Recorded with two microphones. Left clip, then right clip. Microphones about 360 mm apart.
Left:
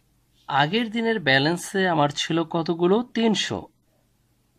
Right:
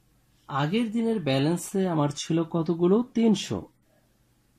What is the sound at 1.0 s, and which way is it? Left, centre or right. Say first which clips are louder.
Speech: left 8 dB; left.